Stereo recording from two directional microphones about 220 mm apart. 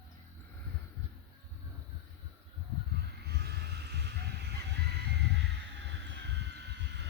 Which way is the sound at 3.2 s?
50° right (ahead or behind).